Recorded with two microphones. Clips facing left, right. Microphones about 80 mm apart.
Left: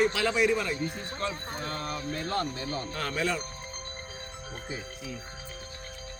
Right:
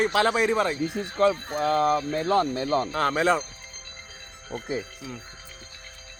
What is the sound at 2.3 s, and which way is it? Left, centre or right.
Speech, right.